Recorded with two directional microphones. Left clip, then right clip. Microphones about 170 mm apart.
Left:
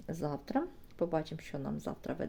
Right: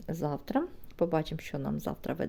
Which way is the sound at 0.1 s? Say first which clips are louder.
Right 4 dB; 30° right (ahead or behind).